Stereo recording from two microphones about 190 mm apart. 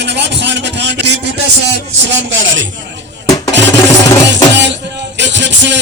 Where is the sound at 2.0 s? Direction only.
80° right.